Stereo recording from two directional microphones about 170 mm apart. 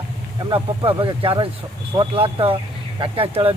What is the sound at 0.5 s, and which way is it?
Speech, 30° right (ahead or behind).